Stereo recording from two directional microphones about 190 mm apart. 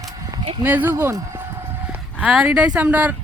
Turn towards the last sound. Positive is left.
turn(degrees=-10)  # may be behind; listen again after turning